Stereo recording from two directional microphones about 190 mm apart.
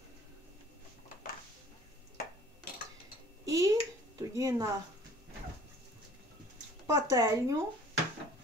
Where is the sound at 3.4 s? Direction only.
15° right (ahead or behind).